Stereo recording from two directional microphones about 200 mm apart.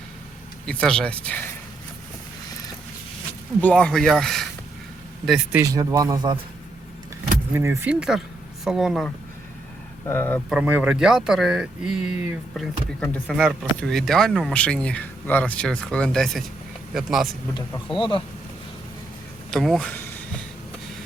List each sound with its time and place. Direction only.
0.6 s speech: 5° left (ahead or behind)
3.6 s speech: 5° left (ahead or behind); by 6.4 s 20° right (ahead or behind)
7.5 s speech: 15° right (ahead or behind)
10.1 s speech: 10° left (ahead or behind)
10.5 s speech: 10° right (ahead or behind)
17.9 s speech: 25° left (ahead or behind)
19.5 s a sound: centre (ahead or behind)